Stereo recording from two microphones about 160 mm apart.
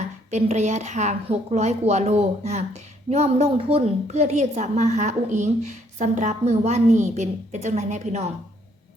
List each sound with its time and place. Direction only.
0.3 s a woman's voice: 45° right (ahead or behind)